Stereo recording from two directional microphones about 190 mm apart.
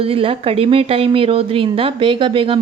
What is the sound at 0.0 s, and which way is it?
Speech, 30° right (ahead or behind).